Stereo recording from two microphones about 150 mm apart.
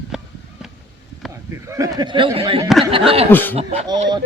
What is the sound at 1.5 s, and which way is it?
Speech, 20° right (ahead or behind).